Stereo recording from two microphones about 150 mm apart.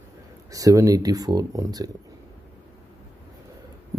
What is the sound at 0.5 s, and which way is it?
Speech, 25° right (ahead or behind).